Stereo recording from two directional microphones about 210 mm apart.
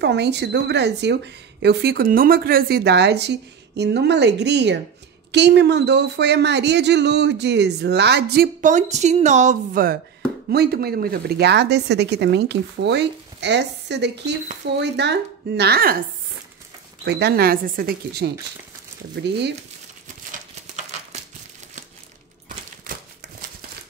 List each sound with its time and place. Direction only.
0.0 s a woman's voice: 55° right (ahead or behind)
10.5 s a woman's voice: 50° right (ahead or behind)
17.0 s a woman's voice: 50° right (ahead or behind)
20.2 s a sound: 30° right (ahead or behind)